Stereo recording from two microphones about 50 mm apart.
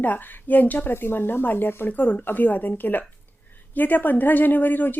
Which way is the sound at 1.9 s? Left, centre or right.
Left.